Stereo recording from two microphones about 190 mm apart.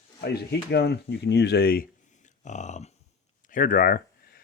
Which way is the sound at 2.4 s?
40° left (ahead or behind).